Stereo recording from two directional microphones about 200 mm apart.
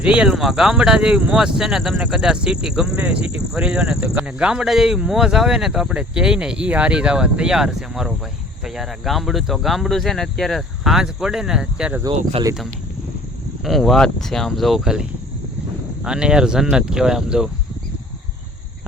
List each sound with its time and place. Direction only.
0.0 s speech: 5° right (ahead or behind)
12.0 s speech: 20° right (ahead or behind)
13.7 s speech: centre (ahead or behind)
16.0 s speech: 5° right (ahead or behind)